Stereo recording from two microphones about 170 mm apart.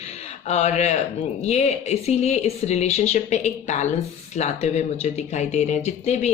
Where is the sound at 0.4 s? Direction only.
40° left (ahead or behind).